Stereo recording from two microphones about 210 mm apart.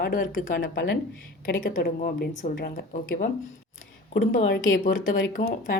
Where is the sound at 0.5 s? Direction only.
60° left (ahead or behind).